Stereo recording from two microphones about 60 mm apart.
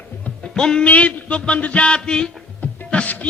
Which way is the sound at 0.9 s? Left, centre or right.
Left.